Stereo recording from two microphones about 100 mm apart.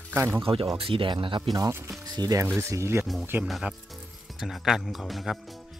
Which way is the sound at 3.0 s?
Centre (ahead or behind).